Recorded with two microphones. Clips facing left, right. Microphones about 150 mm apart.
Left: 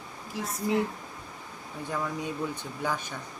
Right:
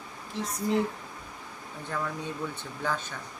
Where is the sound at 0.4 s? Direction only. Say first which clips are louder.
Right 1 dB; 5° left (ahead or behind).